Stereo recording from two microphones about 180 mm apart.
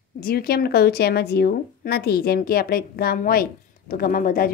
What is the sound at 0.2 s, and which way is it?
A woman's voice, 55° left (ahead or behind).